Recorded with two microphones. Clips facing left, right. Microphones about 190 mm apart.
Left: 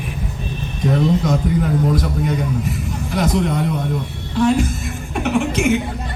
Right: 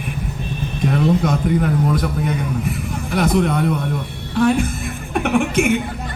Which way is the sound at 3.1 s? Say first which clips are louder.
Right 2 dB; 60° right (ahead or behind).